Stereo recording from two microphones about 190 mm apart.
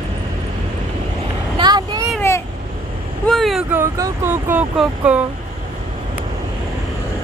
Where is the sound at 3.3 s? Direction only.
Centre (ahead or behind).